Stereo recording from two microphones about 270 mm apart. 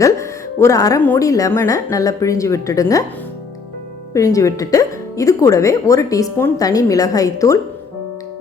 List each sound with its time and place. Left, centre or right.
0.0 s speech: centre
4.1 s speech: centre